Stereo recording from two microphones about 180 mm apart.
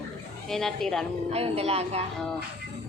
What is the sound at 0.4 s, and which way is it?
Speech, centre (ahead or behind).